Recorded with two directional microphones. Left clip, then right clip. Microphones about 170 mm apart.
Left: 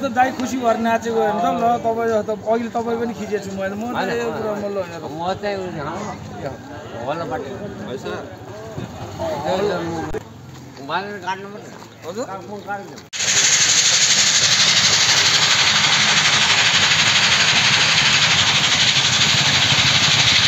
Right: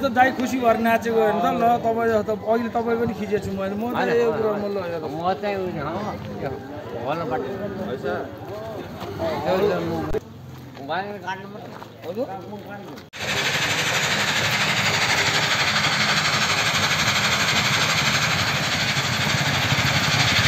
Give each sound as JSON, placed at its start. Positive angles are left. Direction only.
{"t": 0.0, "sound": "a man's voice", "side_deg": 5}
{"t": 3.9, "sound": "a man's voice", "side_deg": 0}
{"t": 5.2, "sound": "speech", "side_deg": -10}
{"t": 13.2, "sound": "engine", "side_deg": -40}